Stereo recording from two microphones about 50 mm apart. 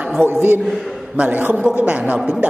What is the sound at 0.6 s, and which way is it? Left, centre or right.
Speech, centre.